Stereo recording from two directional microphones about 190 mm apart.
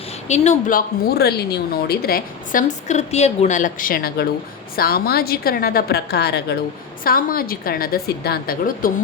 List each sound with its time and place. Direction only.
0.3 s a woman's voice: 35° left (ahead or behind); by 6.6 s 60° left (ahead or behind)
7.0 s a woman's voice: 50° left (ahead or behind)